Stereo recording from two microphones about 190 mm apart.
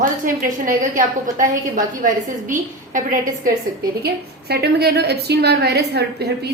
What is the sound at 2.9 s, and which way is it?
Speech, 45° right (ahead or behind).